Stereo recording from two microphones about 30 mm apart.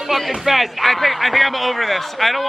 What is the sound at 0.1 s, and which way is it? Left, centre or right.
A man's voice, centre.